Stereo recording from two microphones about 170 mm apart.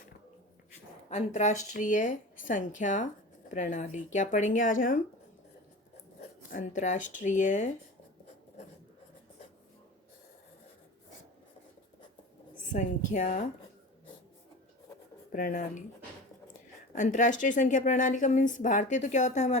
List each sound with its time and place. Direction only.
1.1 s a woman's voice: 40° left (ahead or behind)
6.5 s a woman's voice: 45° left (ahead or behind)
12.7 s a woman's voice: 50° left (ahead or behind)
15.3 s a woman's voice: 55° left (ahead or behind)
16.9 s a woman's voice: 45° left (ahead or behind)